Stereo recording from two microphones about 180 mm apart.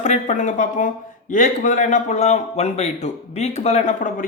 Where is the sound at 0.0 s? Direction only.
40° left (ahead or behind).